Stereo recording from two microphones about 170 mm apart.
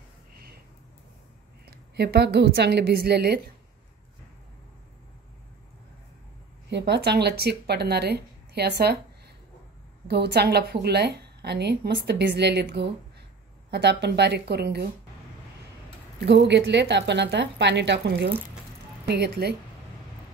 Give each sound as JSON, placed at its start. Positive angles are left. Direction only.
{"t": 1.7, "sound": "a woman's voice", "side_deg": -75}
{"t": 6.7, "sound": "a woman's voice", "side_deg": -75}
{"t": 10.0, "sound": "a woman's voice", "side_deg": -75}
{"t": 16.4, "sound": "a woman's voice", "side_deg": -90}